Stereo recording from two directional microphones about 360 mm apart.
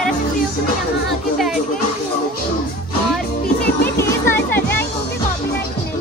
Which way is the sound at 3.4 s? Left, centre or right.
Left.